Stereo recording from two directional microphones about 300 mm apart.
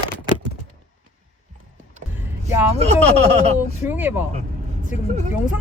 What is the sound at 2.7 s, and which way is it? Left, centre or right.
Speech, right.